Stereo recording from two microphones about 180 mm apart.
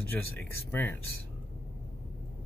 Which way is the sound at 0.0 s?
10° left (ahead or behind).